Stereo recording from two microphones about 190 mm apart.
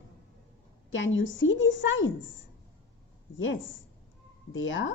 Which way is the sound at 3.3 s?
85° left.